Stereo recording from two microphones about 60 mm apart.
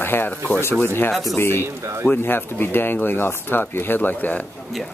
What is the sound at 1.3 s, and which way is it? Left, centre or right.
Speech, left.